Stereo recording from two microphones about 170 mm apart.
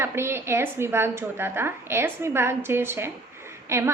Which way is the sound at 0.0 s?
15° right (ahead or behind).